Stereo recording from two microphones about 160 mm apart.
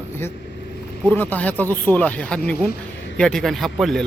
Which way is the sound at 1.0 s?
10° left (ahead or behind).